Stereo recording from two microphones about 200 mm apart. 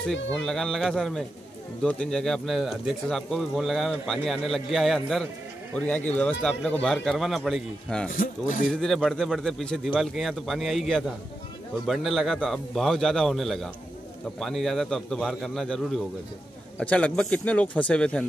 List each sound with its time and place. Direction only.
0.3 s speech: 5° left (ahead or behind)
8.1 s speech: 40° left (ahead or behind)
8.6 s speech: centre (ahead or behind)